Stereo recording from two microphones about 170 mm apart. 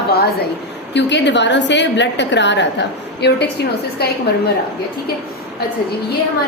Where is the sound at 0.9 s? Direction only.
90° left.